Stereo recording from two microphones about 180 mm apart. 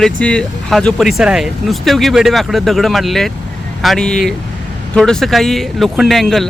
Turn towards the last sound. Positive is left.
turn(degrees=0)  # may be behind; listen again after turning